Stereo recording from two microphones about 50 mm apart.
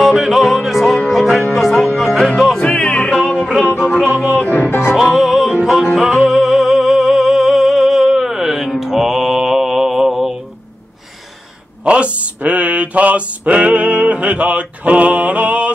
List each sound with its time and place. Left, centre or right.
0.0 s music: centre
2.6 s music: centre
3.3 s music: centre
4.5 s music: left
4.9 s music: centre
11.8 s mantra: right